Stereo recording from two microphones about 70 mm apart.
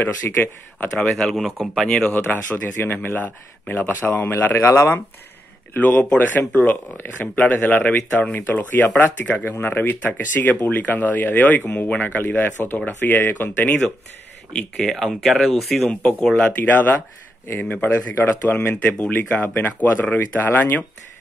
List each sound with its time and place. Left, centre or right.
0.0 s speech: left
1.1 s speech: centre
2.1 s speech: left
5.8 s speech: left
14.5 s speech: centre
16.4 s speech: left